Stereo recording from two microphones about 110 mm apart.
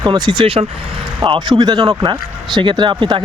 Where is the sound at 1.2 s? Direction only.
45° right (ahead or behind).